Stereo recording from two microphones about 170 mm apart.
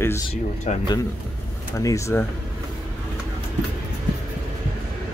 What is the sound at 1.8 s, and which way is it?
Speech, 20° left (ahead or behind).